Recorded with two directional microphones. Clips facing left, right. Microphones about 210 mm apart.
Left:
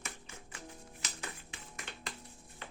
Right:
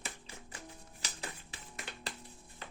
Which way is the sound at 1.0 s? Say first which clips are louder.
Right 2 dB; 35° right (ahead or behind).